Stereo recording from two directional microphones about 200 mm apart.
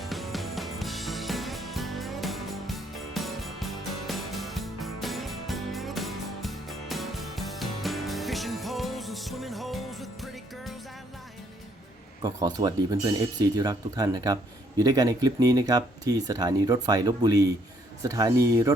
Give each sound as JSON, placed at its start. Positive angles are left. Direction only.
{"t": 0.0, "sound": "music", "side_deg": 0}
{"t": 12.2, "sound": "speech", "side_deg": -20}